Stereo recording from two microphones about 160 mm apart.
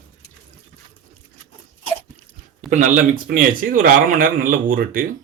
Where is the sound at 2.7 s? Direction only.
55° right (ahead or behind).